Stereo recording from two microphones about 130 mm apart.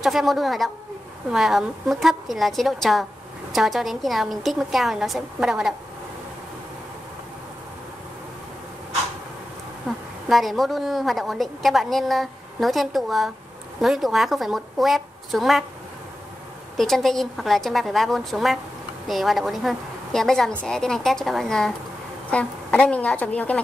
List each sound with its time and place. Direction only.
0.0 s a woman's voice: centre (ahead or behind)
9.8 s a woman's voice: centre (ahead or behind)
16.7 s a woman's voice: centre (ahead or behind)